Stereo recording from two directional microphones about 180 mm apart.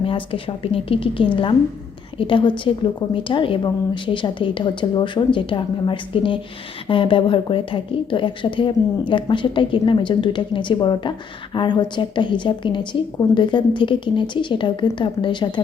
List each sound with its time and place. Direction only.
0.6 s a woman's voice: 30° left (ahead or behind)